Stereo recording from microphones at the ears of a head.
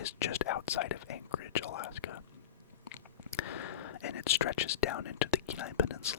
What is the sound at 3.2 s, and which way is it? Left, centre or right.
Whispering, left.